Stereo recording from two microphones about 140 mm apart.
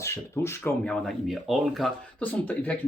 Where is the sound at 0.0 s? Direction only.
20° left (ahead or behind).